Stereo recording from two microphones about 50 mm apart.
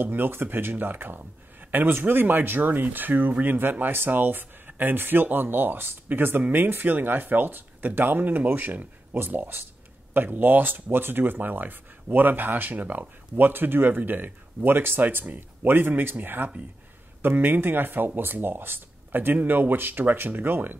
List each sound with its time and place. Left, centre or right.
0.0 s speech: right
12.7 s speech: right
13.4 s speech: right